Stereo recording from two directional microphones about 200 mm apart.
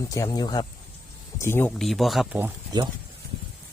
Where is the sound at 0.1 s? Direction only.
20° left (ahead or behind).